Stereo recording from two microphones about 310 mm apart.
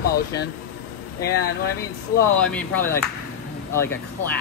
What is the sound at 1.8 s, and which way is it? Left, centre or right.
Speech, centre.